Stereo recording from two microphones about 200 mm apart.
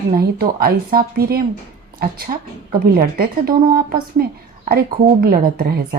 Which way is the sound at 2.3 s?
35° right (ahead or behind).